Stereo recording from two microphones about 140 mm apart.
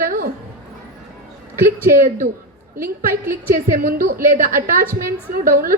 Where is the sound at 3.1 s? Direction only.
90° right.